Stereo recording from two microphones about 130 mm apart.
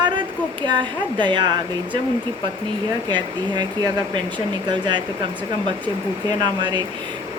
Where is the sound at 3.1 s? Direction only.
35° right (ahead or behind).